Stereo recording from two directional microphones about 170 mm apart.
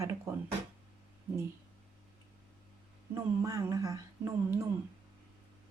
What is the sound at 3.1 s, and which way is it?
Speech, 20° right (ahead or behind).